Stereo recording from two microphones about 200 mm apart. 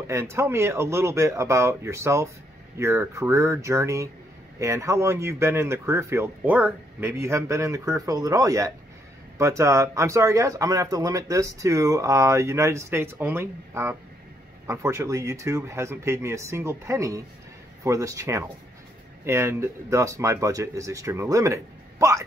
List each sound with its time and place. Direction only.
0.0 s speech: 15° right (ahead or behind)